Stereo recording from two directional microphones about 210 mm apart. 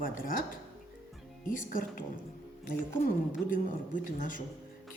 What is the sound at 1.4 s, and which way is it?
Speech, 40° left (ahead or behind).